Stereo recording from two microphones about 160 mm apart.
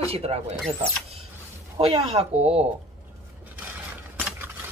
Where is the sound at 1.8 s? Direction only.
40° right (ahead or behind).